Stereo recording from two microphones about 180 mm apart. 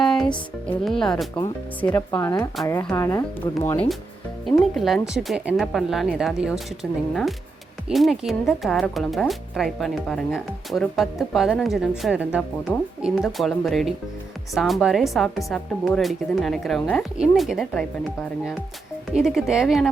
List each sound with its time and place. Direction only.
0.0 s speech: 5° left (ahead or behind)
1.8 s speech: 15° left (ahead or behind)
4.4 s speech: centre (ahead or behind)